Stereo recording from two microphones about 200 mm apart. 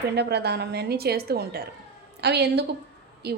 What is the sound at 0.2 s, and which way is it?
A woman's voice, 55° right (ahead or behind).